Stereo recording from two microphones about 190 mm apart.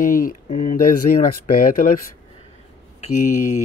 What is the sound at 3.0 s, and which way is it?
Speech, 45° left (ahead or behind).